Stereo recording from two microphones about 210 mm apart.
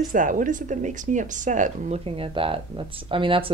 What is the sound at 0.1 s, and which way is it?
Speech, 40° right (ahead or behind).